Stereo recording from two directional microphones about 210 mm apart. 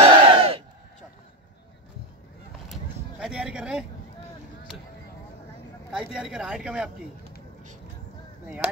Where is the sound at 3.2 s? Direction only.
5° right (ahead or behind).